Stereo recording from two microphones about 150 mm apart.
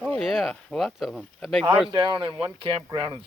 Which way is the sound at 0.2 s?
Centre (ahead or behind).